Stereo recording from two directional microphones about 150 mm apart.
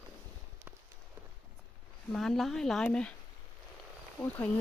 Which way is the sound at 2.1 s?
Centre (ahead or behind).